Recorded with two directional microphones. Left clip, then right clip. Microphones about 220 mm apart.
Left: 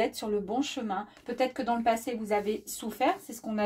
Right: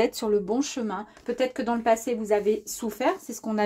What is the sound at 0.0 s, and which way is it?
Speech, 40° right (ahead or behind).